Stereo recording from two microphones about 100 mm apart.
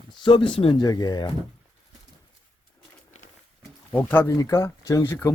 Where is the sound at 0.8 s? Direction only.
40° left (ahead or behind).